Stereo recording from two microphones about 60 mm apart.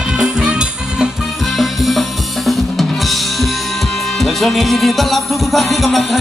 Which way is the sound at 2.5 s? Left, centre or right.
Centre.